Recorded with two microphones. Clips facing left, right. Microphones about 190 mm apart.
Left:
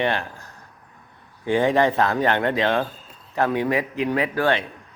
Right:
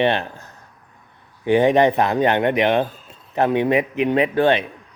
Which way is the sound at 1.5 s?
20° right (ahead or behind).